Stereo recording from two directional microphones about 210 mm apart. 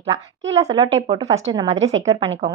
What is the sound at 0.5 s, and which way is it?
A woman's voice, 30° right (ahead or behind).